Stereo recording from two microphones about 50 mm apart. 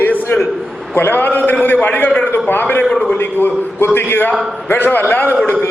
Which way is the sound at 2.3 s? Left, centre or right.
Left.